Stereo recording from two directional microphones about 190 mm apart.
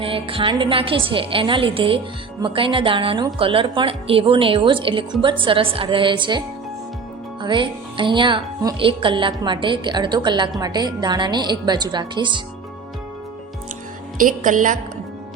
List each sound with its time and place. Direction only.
0.0 s speech: 30° right (ahead or behind)
7.4 s speech: 25° right (ahead or behind)
14.2 s a woman's voice: 45° right (ahead or behind)